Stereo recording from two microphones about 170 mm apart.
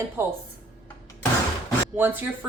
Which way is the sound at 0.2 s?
15° right (ahead or behind).